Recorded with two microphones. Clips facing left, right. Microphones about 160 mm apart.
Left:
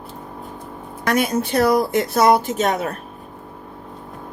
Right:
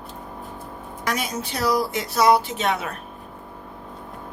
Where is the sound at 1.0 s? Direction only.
55° left (ahead or behind).